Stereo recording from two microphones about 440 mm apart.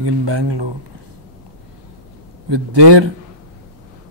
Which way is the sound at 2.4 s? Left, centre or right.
Right.